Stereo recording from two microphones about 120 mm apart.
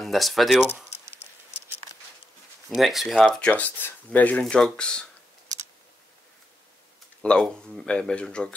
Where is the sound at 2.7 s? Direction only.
Centre (ahead or behind).